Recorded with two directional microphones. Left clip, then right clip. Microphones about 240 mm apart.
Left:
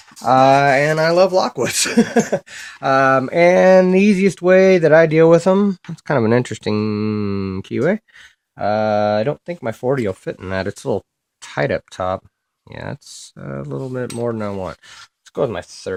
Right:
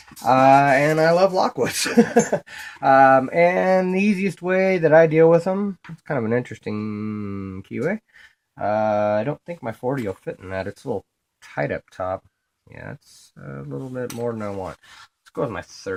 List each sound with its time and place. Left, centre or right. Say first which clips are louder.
0.2 s speech: left 2 dB; left